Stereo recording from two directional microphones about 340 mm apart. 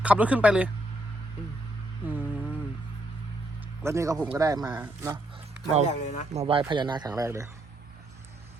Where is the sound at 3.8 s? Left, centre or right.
Centre.